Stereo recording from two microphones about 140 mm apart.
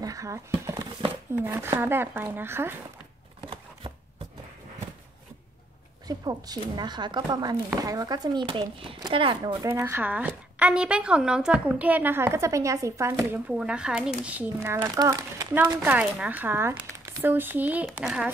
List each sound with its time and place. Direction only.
0.0 s speech: 25° right (ahead or behind)
6.0 s speech: 25° right (ahead or behind)
13.5 s speech: 5° right (ahead or behind)